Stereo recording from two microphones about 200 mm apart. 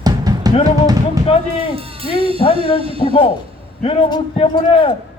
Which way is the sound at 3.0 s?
25° left (ahead or behind).